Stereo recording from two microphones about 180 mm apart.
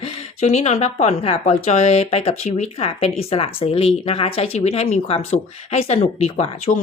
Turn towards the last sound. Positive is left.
turn(degrees=35)  # may be behind; listen again after turning